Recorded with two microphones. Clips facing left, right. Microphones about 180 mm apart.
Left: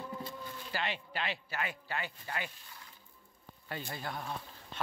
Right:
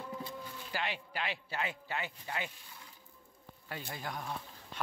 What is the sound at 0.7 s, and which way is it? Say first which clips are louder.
Speech: left 1 dB; 10° right (ahead or behind).